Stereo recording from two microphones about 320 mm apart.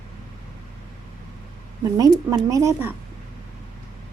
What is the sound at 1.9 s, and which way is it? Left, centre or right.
Speech, centre.